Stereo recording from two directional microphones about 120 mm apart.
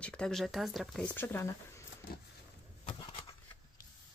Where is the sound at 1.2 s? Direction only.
20° left (ahead or behind).